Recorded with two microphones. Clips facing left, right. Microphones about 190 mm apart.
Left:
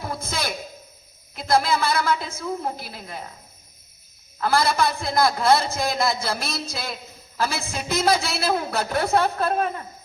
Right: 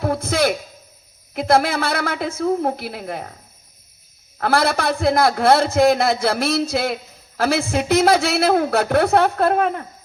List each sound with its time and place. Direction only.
0.0 s a sound: 65° right (ahead or behind)
1.3 s a man's voice: 65° right (ahead or behind)
4.4 s a man's voice: 65° right (ahead or behind)